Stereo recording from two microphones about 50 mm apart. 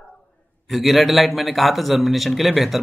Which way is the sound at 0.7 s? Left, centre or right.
Centre.